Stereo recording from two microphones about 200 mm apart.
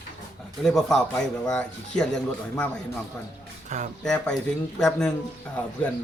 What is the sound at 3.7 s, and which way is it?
Speech, 35° right (ahead or behind).